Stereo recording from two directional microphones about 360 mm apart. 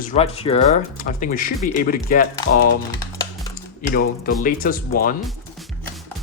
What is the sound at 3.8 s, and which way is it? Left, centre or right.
Speech, left.